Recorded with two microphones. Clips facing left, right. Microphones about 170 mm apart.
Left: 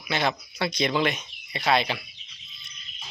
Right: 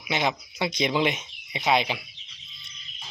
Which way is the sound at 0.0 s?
15° right (ahead or behind).